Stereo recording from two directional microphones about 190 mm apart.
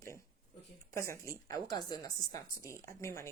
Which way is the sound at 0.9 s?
15° left (ahead or behind).